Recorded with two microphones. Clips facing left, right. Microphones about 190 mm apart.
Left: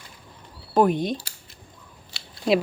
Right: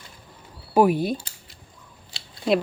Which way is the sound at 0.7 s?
5° right (ahead or behind).